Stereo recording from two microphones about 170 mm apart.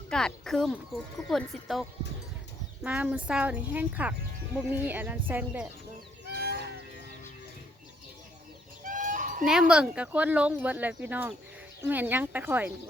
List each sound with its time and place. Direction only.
0.1 s speech: 5° left (ahead or behind)
2.8 s speech: 10° right (ahead or behind)
6.3 s a sound: 65° right (ahead or behind)
8.8 s fowl: 50° right (ahead or behind)
9.5 s speech: 5° right (ahead or behind)